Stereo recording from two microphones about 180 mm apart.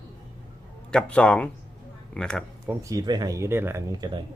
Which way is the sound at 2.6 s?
15° right (ahead or behind).